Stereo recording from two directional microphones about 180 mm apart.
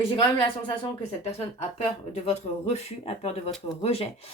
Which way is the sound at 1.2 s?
35° left (ahead or behind).